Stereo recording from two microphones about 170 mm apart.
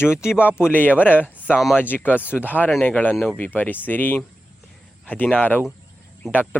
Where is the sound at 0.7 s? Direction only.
10° left (ahead or behind).